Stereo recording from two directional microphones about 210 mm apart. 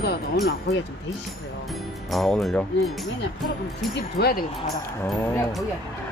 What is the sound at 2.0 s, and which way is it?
Speech, centre (ahead or behind).